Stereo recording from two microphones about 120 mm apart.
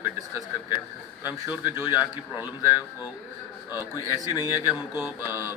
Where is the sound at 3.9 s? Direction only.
35° left (ahead or behind).